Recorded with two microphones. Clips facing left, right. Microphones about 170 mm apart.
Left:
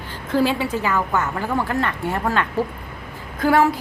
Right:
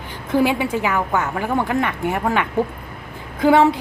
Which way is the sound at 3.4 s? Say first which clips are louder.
Right 3 dB; 20° right (ahead or behind).